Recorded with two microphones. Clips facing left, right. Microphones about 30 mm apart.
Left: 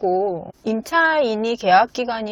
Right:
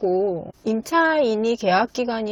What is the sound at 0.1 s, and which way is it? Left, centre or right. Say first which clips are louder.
Speech: left 1 dB; centre.